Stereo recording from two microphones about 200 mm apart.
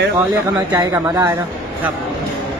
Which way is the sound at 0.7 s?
20° right (ahead or behind).